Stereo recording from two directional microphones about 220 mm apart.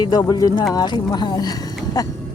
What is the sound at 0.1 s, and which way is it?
Speech, 15° left (ahead or behind).